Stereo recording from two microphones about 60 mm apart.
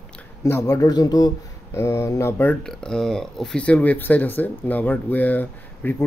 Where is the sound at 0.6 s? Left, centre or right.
Left.